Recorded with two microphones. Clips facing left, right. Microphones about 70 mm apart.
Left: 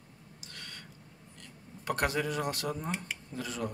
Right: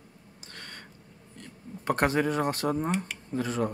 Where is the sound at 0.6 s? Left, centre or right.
Right.